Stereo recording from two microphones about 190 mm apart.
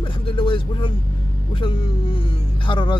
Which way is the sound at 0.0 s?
25° left (ahead or behind).